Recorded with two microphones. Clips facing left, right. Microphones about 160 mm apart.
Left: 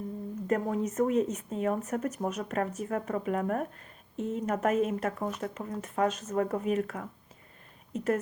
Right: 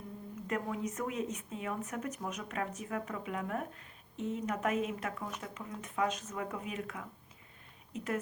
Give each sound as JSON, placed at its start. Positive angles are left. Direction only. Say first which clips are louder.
{"t": 0.4, "sound": "a woman's voice", "louder": "left 7 dB", "side_deg": 40}